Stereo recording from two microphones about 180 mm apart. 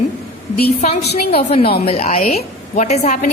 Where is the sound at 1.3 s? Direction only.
35° left (ahead or behind).